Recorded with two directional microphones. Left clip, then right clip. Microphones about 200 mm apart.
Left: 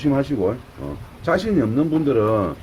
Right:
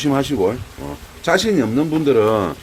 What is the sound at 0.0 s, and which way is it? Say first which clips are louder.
Speech: right 2 dB; 35° right (ahead or behind).